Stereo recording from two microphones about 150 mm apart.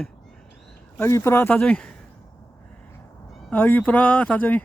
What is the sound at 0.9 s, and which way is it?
Speech, 20° left (ahead or behind).